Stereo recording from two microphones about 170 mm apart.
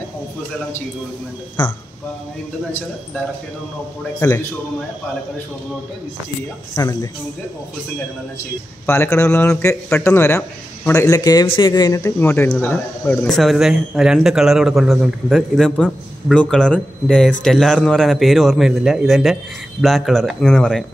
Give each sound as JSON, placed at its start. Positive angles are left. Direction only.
{"t": 4.2, "sound": "speech", "side_deg": 15}
{"t": 6.7, "sound": "speech", "side_deg": 20}
{"t": 8.8, "sound": "speech", "side_deg": 15}
{"t": 13.4, "sound": "a man's voice", "side_deg": 0}